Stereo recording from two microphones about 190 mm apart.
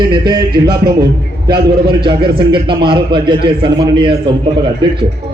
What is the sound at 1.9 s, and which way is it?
A man's voice, 25° right (ahead or behind).